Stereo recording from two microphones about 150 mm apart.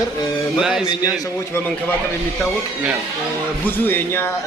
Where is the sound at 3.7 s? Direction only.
15° left (ahead or behind).